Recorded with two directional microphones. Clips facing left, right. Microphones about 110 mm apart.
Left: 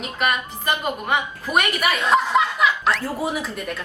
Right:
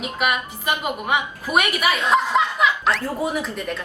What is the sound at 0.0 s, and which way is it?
A woman's voice, 10° right (ahead or behind).